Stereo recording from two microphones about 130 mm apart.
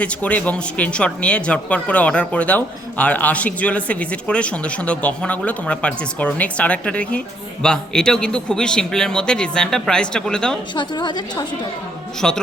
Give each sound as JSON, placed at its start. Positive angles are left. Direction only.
{"t": 0.0, "sound": "a man's voice", "side_deg": 10}
{"t": 10.8, "sound": "a woman's voice", "side_deg": 35}
{"t": 12.2, "sound": "speech", "side_deg": 5}